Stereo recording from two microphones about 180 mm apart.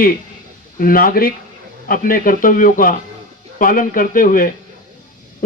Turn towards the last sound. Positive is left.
turn(degrees=50)  # may be behind; listen again after turning